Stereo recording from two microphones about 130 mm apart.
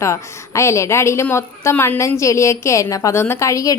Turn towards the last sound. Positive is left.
turn(degrees=25)  # may be behind; listen again after turning